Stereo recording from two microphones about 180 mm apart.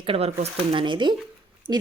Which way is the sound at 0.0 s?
30° right (ahead or behind).